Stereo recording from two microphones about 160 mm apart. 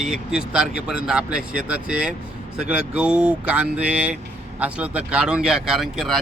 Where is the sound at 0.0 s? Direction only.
5° right (ahead or behind).